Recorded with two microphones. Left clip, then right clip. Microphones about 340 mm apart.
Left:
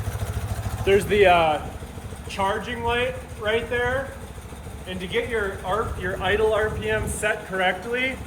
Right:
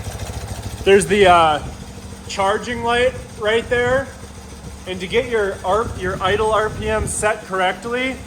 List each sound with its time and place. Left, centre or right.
0.9 s speech: right
2.3 s speech: right